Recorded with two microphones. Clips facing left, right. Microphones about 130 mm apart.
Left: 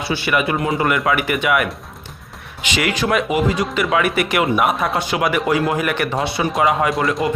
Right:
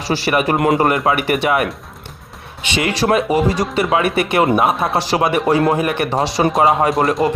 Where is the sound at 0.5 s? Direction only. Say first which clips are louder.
Right 5 dB; 65° right (ahead or behind).